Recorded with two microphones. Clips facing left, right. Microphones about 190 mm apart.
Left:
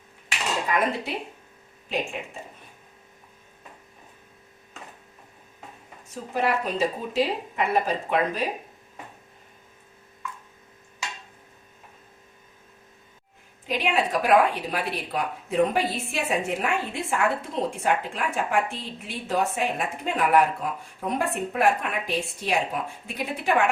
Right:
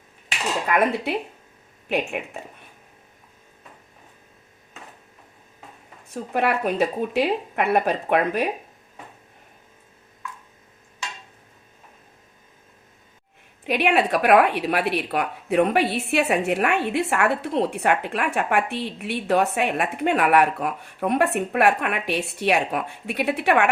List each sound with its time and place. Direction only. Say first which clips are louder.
0.7 s speech: right 5 dB; 60° right (ahead or behind)
6.1 s speech: right 3 dB; 60° right (ahead or behind)
13.7 s a woman's voice: right 5 dB; 65° right (ahead or behind)